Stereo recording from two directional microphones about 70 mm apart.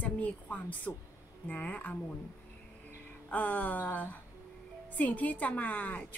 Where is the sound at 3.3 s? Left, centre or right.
Left.